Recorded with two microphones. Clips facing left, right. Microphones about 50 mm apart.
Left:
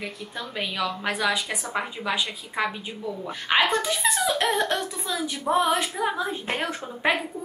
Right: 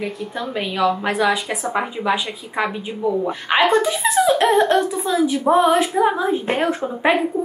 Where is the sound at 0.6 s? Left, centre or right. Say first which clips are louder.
Right 9 dB; centre.